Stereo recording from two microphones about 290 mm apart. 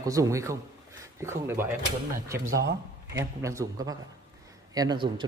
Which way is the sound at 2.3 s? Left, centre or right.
Right.